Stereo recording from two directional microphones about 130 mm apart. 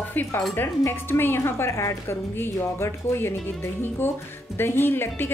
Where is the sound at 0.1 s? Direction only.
15° left (ahead or behind).